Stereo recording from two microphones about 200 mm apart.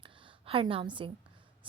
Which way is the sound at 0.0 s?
30° right (ahead or behind).